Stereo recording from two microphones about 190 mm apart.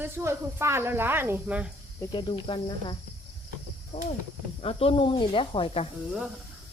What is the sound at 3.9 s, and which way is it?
Speech, 35° left (ahead or behind).